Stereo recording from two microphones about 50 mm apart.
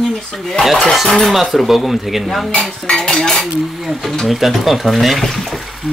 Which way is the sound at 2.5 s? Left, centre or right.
Centre.